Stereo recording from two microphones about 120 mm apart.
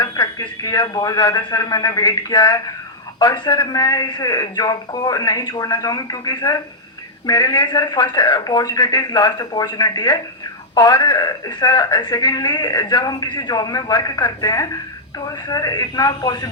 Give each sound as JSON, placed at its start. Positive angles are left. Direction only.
{"t": 0.0, "sound": "speech", "side_deg": 30}